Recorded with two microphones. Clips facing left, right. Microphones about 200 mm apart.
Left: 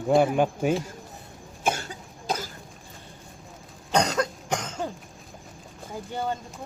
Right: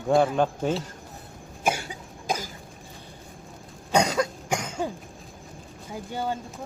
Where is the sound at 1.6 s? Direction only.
10° right (ahead or behind).